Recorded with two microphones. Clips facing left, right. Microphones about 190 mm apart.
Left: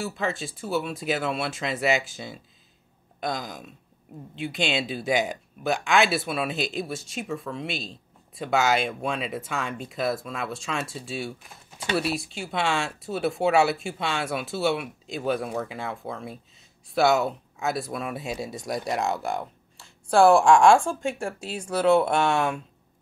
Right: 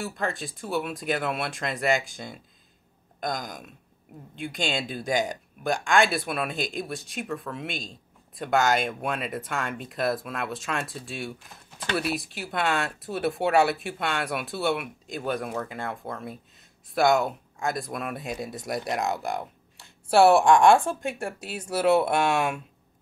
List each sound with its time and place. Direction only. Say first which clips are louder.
0.0 s speech: left 2 dB; centre (ahead or behind)
3.4 s speech: left 1 dB; centre (ahead or behind)
4.6 s speech: left 2 dB; 45° right (ahead or behind)
5.0 s speech: even; 5° left (ahead or behind)